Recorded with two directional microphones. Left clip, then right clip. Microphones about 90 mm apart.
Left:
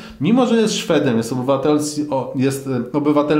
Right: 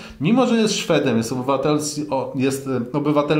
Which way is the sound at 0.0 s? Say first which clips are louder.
Left 2 dB; 30° right (ahead or behind).